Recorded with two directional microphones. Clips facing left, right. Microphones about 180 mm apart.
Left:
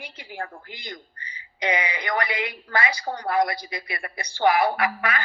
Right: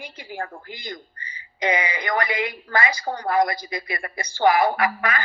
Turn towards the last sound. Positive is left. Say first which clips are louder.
# right 2 dB
turn(degrees=-45)  # may be behind; listen again after turning